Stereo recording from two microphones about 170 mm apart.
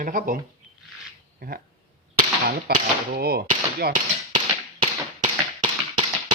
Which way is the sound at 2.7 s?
55° right (ahead or behind).